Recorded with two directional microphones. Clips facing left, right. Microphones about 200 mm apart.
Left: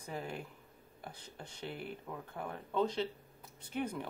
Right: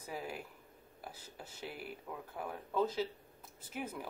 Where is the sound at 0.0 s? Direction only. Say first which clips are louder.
Left 1 dB; 5° right (ahead or behind).